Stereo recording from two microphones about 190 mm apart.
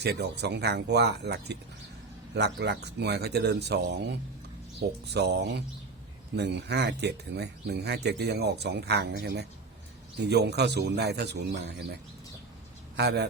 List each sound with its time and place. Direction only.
0.0 s speech: 60° right (ahead or behind)
13.0 s speech: 60° right (ahead or behind)